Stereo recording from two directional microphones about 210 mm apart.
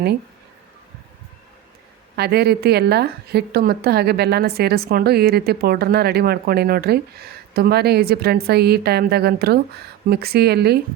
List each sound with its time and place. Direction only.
2.1 s a woman's voice: 50° right (ahead or behind)